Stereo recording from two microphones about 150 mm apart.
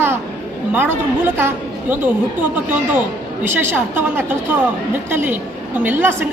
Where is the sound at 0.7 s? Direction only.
10° right (ahead or behind).